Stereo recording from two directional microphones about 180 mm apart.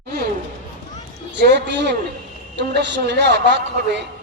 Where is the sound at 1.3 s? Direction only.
70° right (ahead or behind).